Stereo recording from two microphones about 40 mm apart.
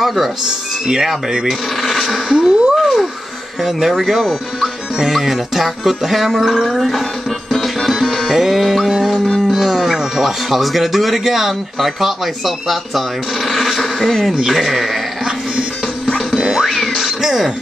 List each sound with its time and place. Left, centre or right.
0.0 s speech: centre
1.3 s speech: centre
1.8 s speech: centre
2.3 s a sound: centre
3.6 s speech: centre
7.5 s music: centre
9.5 s speech: centre
16.3 s music: centre
16.6 s a sound: centre